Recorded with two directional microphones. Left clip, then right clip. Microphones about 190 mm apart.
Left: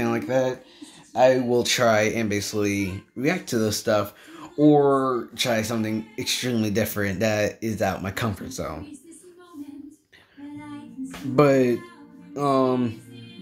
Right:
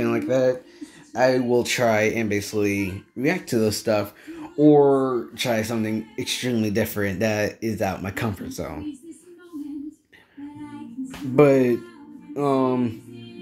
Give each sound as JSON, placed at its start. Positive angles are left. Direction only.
{"t": 0.0, "sound": "speech", "side_deg": 5}
{"t": 11.3, "sound": "speech", "side_deg": 0}